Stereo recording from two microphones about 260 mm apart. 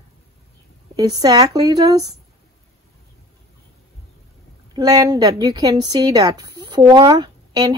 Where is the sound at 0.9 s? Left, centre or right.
Centre.